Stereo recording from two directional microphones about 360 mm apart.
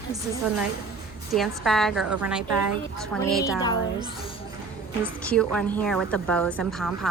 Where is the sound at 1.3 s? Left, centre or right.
Centre.